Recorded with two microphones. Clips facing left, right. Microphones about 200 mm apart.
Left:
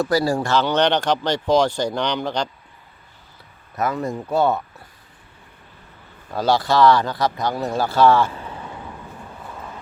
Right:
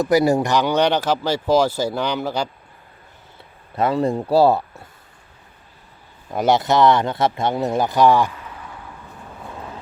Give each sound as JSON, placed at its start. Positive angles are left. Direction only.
{"t": 0.0, "sound": "speech", "side_deg": -20}
{"t": 3.8, "sound": "speech", "side_deg": -30}
{"t": 6.3, "sound": "speech", "side_deg": -20}
{"t": 8.3, "sound": "vehicle", "side_deg": 30}